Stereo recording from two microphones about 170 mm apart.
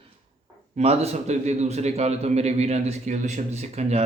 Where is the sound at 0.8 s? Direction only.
40° right (ahead or behind).